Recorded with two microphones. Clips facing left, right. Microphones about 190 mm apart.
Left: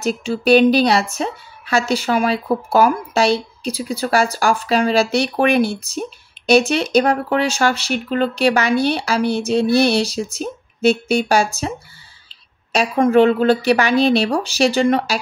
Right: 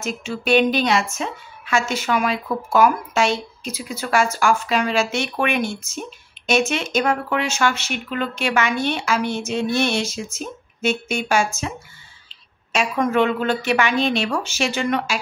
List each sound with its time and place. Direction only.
0.0 s a woman's voice: 35° left (ahead or behind)
12.7 s a woman's voice: 35° left (ahead or behind)